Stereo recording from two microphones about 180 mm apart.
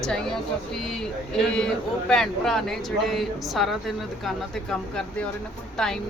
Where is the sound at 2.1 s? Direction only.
Centre (ahead or behind).